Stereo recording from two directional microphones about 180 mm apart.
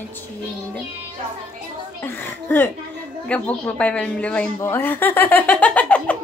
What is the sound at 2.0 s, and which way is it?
A woman's voice, 10° left (ahead or behind).